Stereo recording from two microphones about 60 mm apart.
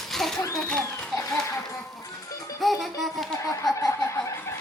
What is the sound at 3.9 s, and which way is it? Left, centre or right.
Snicker, left.